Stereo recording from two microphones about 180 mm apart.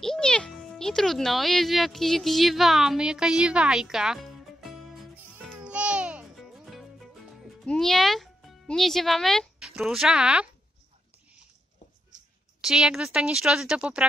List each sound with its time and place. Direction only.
0.0 s a child's voice: 5° left (ahead or behind)
5.5 s music: 5° right (ahead or behind)
12.6 s a woman's voice: 5° right (ahead or behind)